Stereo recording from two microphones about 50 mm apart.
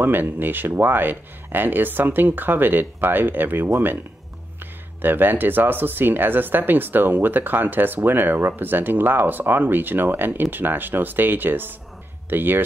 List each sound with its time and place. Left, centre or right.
0.0 s speech: right